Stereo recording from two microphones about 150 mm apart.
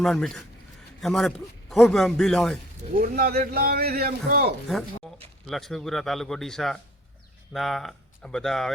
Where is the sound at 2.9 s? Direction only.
85° right.